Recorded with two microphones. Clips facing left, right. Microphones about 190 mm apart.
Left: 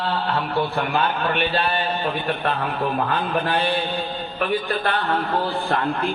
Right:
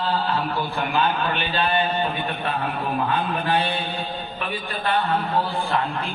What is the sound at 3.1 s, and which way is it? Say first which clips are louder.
A woman's voice: left 1 dB; 60° left (ahead or behind).